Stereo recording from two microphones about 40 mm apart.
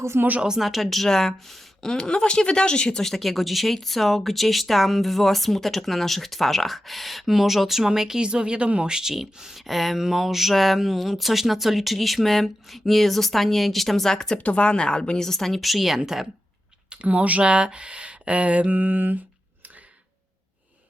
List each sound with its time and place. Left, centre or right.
0.1 s speech: right
0.6 s a woman's voice: centre; by 3.0 s left
3.0 s speech: centre
8.2 s speech: right
8.9 s speech: centre
14.3 s a woman's voice: left; by 16.0 s centre
16.9 s speech: right